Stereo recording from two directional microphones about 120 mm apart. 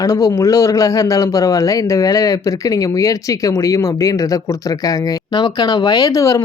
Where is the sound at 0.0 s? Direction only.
30° left (ahead or behind).